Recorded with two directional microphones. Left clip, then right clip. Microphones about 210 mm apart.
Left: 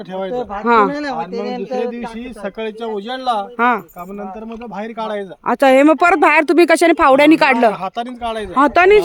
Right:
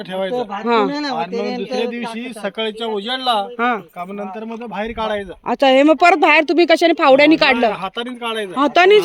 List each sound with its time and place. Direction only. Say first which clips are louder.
0.1 s speech: right 1 dB; centre (ahead or behind)
0.6 s speech: left 4 dB; 15° left (ahead or behind)
0.9 s a man's voice: even; 50° right (ahead or behind)
2.4 s speech: right 2 dB; 10° left (ahead or behind)
5.5 s speech: left 2 dB; 15° left (ahead or behind)